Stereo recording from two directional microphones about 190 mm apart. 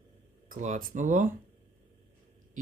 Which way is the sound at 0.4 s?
45° right (ahead or behind).